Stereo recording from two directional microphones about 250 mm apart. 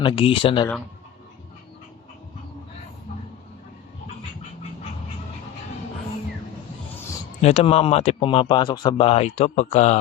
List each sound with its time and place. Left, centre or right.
0.0 s speech: centre
7.4 s speech: left